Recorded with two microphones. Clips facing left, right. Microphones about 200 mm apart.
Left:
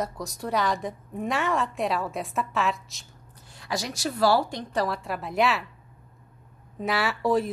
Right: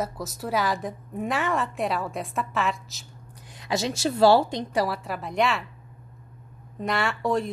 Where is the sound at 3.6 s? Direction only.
25° right (ahead or behind).